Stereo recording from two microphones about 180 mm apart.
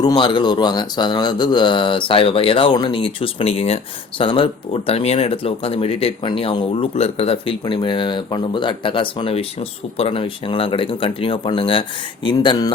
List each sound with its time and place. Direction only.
0.0 s speech: 25° left (ahead or behind)